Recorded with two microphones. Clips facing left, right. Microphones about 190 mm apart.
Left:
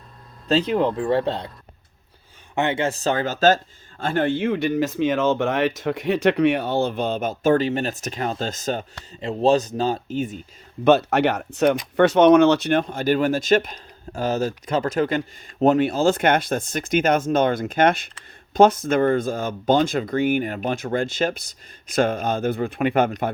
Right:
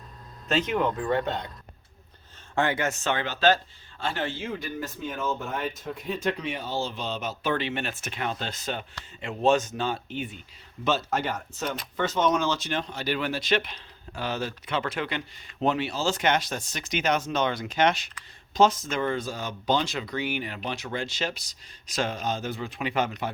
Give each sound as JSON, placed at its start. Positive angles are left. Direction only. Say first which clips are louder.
{"t": 0.4, "sound": "speech", "louder": "left 6 dB", "side_deg": 35}
{"t": 2.6, "sound": "speech", "louder": "left 4 dB", "side_deg": 25}
{"t": 10.8, "sound": "speech", "louder": "left 10 dB", "side_deg": 65}